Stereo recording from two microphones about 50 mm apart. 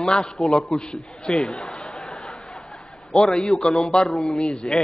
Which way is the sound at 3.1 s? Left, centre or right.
Centre.